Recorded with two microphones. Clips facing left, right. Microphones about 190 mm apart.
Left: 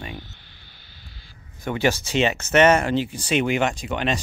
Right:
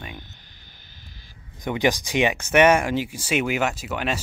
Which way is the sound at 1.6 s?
15° right (ahead or behind).